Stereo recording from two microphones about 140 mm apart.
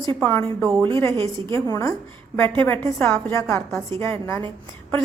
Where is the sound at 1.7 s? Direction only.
20° left (ahead or behind).